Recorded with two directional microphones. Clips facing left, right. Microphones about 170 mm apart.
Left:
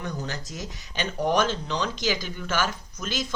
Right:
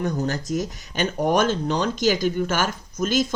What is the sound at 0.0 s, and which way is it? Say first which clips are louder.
Speech: right 8 dB; 45° right (ahead or behind).